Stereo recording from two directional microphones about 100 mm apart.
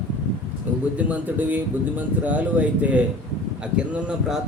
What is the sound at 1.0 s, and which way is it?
Speech, 15° right (ahead or behind).